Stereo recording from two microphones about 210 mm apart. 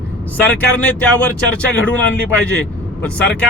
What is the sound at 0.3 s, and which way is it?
Speech, 10° left (ahead or behind).